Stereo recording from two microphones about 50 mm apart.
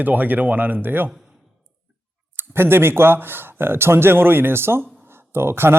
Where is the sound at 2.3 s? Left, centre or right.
Right.